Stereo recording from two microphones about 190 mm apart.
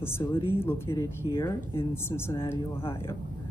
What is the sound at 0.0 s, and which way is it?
A woman's voice, 10° left (ahead or behind).